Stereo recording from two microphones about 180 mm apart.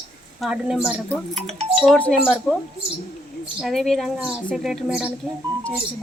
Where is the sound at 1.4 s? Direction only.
35° right (ahead or behind).